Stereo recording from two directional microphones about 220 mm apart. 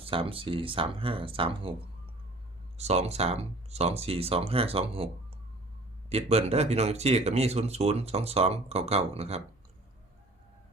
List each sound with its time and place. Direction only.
0.0 s speech: 25° right (ahead or behind)
2.7 s speech: 30° right (ahead or behind)
6.1 s speech: 30° right (ahead or behind)